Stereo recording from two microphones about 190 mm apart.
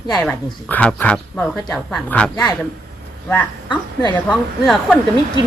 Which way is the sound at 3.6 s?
20° left (ahead or behind).